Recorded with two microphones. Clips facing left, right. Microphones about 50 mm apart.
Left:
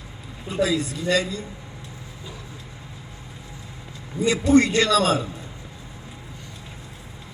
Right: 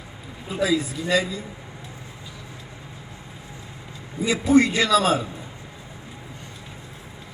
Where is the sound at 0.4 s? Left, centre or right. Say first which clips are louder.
Even; centre.